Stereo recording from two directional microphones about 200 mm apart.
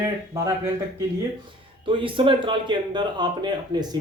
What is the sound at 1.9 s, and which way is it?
Speech, 25° right (ahead or behind).